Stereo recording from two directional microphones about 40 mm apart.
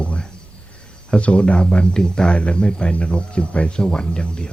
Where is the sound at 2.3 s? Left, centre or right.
Left.